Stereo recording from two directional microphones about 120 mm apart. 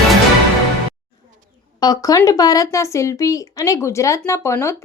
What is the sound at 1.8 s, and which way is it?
Speech, 30° left (ahead or behind).